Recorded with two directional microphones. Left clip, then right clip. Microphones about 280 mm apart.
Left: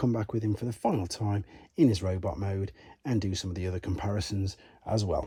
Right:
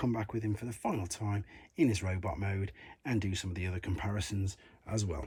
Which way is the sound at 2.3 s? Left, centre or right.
Centre.